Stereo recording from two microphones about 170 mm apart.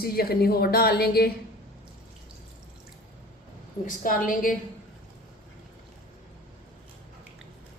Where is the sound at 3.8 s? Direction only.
55° left (ahead or behind).